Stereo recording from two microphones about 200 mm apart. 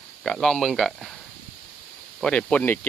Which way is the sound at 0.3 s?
5° left (ahead or behind).